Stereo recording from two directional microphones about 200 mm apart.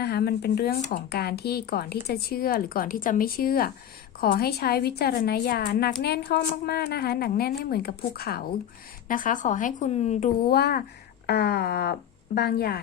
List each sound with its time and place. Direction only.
0.0 s speech: 50° left (ahead or behind)
0.8 s speech: 40° left (ahead or behind)
1.1 s speech: 50° left (ahead or behind); by 10.2 s 35° left (ahead or behind)
10.5 s speech: 50° left (ahead or behind)